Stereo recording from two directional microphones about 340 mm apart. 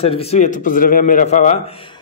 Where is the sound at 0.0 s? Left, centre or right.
Centre.